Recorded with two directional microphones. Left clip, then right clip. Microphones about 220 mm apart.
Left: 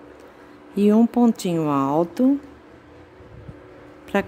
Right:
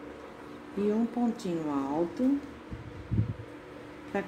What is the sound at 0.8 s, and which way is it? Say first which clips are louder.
A woman's voice: left 12 dB; 45° left (ahead or behind).